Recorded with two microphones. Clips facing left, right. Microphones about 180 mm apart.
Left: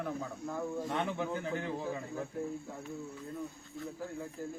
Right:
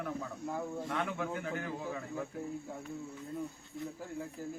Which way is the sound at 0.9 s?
25° left (ahead or behind).